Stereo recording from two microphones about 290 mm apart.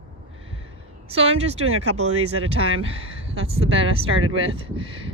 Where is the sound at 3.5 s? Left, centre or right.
Centre.